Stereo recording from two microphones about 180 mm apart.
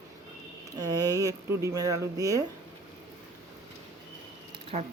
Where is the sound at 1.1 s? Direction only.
15° right (ahead or behind).